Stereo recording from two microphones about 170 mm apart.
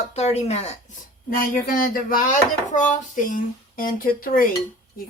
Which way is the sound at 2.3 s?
50° left (ahead or behind).